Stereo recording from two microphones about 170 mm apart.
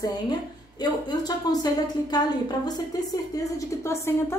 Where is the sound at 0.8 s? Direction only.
25° left (ahead or behind).